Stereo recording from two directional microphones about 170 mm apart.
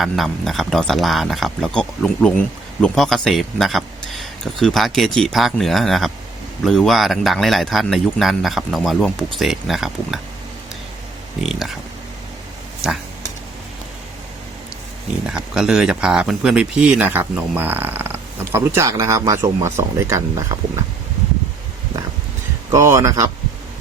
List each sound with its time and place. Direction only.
0.0 s speech: centre (ahead or behind)
11.3 s speech: centre (ahead or behind)
12.8 s speech: 5° right (ahead or behind)
15.3 s speech: 5° right (ahead or behind)
22.7 s speech: 15° right (ahead or behind)